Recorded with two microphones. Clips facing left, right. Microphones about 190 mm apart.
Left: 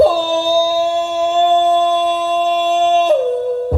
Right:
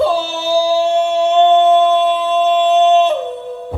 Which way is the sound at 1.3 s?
40° left (ahead or behind).